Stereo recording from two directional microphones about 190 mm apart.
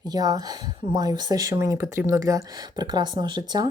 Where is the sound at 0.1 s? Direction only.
20° right (ahead or behind).